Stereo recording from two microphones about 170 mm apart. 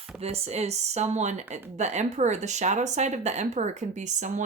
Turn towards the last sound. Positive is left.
turn(degrees=-45)  # may be behind; listen again after turning